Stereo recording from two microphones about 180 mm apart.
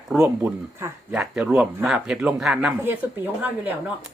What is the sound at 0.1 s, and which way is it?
Speech, 10° right (ahead or behind).